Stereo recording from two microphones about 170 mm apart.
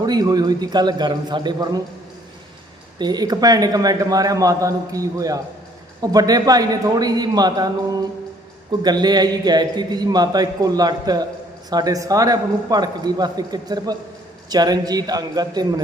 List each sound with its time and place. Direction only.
0.0 s a man's voice: 25° right (ahead or behind)
3.0 s a man's voice: 25° right (ahead or behind)
8.8 s a man's voice: 25° right (ahead or behind)